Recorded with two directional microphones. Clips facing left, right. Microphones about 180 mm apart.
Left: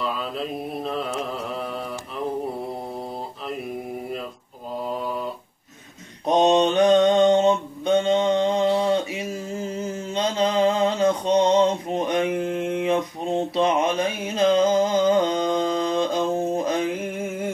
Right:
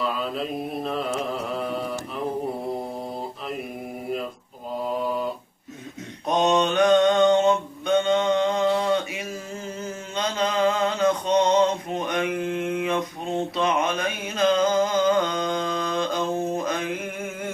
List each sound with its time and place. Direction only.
0.0 s mantra: centre (ahead or behind)
6.2 s mantra: 30° left (ahead or behind)
13.6 s a sound: 25° left (ahead or behind)